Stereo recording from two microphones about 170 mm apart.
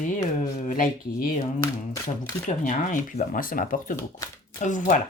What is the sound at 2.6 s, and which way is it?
Speech, 50° left (ahead or behind).